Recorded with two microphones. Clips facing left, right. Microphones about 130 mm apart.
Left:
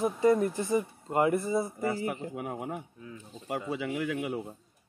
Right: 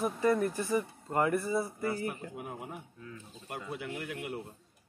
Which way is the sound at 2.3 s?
80° left.